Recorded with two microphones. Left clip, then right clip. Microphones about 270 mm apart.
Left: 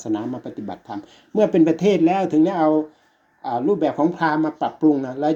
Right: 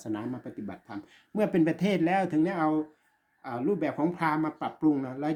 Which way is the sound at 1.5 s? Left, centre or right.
Right.